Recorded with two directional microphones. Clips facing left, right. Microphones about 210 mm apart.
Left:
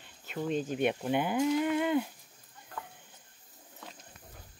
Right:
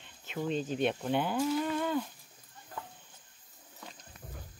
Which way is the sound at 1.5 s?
15° left (ahead or behind).